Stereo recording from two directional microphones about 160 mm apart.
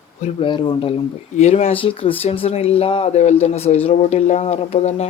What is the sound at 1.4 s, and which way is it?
Speech, 40° left (ahead or behind).